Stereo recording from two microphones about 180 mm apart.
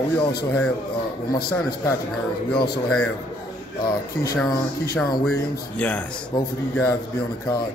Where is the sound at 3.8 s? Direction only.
20° left (ahead or behind).